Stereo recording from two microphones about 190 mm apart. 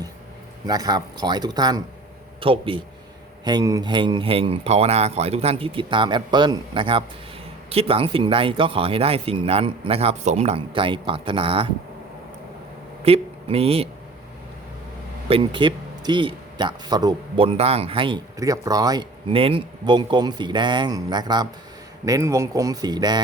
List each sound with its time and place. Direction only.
0.7 s speech: 20° right (ahead or behind)
13.1 s speech: 30° right (ahead or behind)
15.3 s speech: 25° right (ahead or behind)